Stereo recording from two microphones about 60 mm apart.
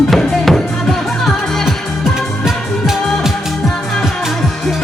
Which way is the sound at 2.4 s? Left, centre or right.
Centre.